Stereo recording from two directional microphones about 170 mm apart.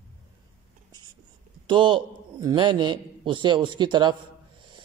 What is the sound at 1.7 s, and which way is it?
A man's voice, 30° right (ahead or behind).